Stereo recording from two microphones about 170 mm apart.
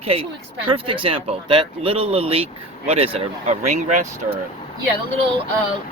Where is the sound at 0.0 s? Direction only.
35° right (ahead or behind).